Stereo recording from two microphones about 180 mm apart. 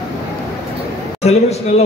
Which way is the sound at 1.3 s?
35° left (ahead or behind).